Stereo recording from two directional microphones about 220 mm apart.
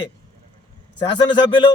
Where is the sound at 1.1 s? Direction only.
20° left (ahead or behind).